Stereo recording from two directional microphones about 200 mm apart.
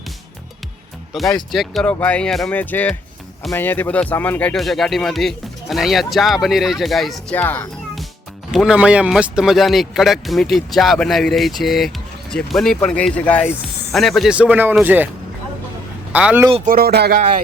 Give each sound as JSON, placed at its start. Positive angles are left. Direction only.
{"t": 1.1, "sound": "speech", "side_deg": 0}
{"t": 8.5, "sound": "speech", "side_deg": -5}
{"t": 16.1, "sound": "speech", "side_deg": -10}
{"t": 16.6, "sound": "speech", "side_deg": -50}